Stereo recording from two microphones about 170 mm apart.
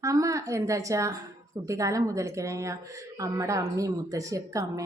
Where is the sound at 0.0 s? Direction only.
20° right (ahead or behind).